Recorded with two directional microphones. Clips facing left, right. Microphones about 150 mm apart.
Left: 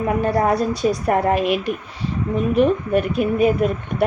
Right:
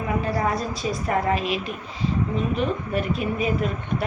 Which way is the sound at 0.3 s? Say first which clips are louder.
Left 6 dB; 60° left (ahead or behind).